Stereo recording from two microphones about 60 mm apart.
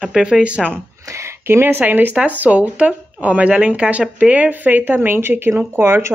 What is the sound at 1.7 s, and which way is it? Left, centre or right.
Speech, right.